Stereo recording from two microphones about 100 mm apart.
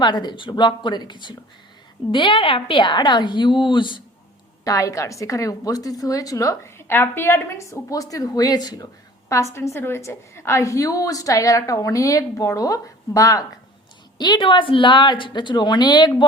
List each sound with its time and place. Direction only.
0.0 s a woman's voice: 50° left (ahead or behind)
4.6 s a woman's voice: 35° left (ahead or behind)
9.3 s a woman's voice: 30° left (ahead or behind)
14.2 s a woman's voice: 50° left (ahead or behind)